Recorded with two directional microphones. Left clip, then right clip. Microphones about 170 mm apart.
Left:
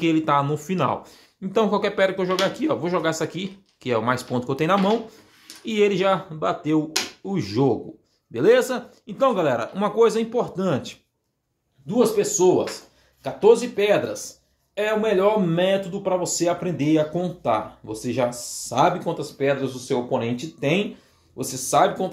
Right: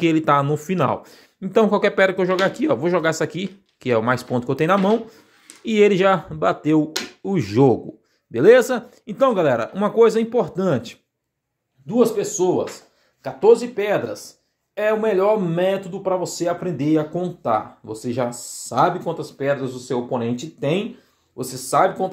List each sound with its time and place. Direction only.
0.0 s speech: 40° right (ahead or behind)
13.2 s speech: 25° right (ahead or behind)
19.9 s speech: 40° right (ahead or behind)